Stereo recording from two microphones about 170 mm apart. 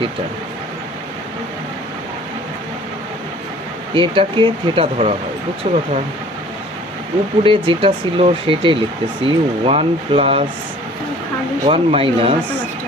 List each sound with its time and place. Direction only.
3.9 s speech: 30° right (ahead or behind)
7.4 s speech: 30° right (ahead or behind)
11.6 s speech: 35° right (ahead or behind)